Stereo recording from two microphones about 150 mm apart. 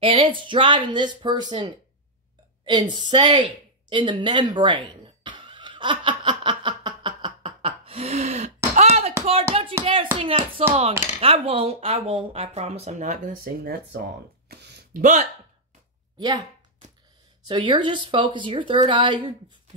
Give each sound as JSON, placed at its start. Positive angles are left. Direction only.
{"t": 0.0, "sound": "speech", "side_deg": -35}
{"t": 3.9, "sound": "cough", "side_deg": -30}
{"t": 8.7, "sound": "a sound", "side_deg": -45}
{"t": 9.2, "sound": "speech", "side_deg": -40}
{"t": 14.5, "sound": "a sound", "side_deg": -90}
{"t": 16.2, "sound": "speech", "side_deg": -25}